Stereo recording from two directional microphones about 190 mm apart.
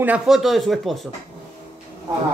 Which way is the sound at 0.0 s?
5° right (ahead or behind).